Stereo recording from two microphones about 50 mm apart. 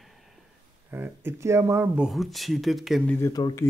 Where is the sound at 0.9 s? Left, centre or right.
Right.